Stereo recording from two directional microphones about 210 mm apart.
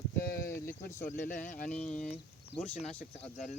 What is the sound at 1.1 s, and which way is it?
Speech, 35° left (ahead or behind).